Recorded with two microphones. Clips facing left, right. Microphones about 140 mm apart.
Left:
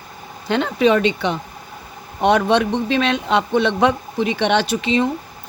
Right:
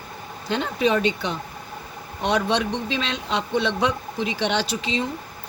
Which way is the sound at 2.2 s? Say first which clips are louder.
Left 7 dB; 55° left (ahead or behind).